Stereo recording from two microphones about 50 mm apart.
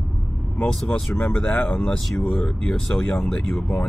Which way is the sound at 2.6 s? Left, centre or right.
Centre.